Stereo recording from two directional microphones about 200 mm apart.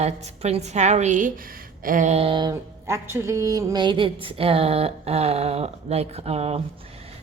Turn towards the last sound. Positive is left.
turn(degrees=-30)  # may be behind; listen again after turning